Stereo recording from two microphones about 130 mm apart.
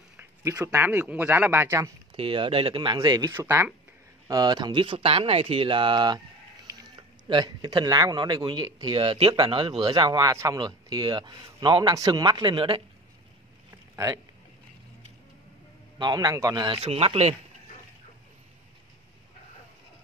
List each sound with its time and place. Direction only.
0.2 s a sound: 15° right (ahead or behind)
0.6 s speech: 20° right (ahead or behind)
2.1 s speech: 40° right (ahead or behind)
3.3 s speech: 15° right (ahead or behind)
4.3 s speech: 30° right (ahead or behind)
13.9 s speech: 30° right (ahead or behind)
16.0 s speech: 35° right (ahead or behind)
16.8 s speech: 50° right (ahead or behind)